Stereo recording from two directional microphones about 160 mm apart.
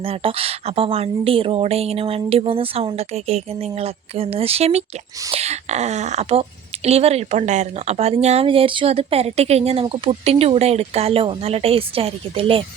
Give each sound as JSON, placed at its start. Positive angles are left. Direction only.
{"t": 0.0, "sound": "speech", "side_deg": -35}